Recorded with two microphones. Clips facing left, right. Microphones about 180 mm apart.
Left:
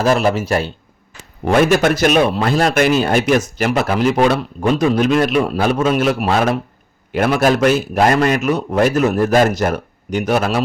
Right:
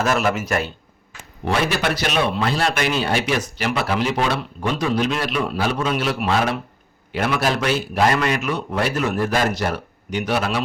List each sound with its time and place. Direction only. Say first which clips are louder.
0.0 s a man's voice: left 5 dB; 35° left (ahead or behind)
1.5 s speech: left 8 dB; 50° left (ahead or behind)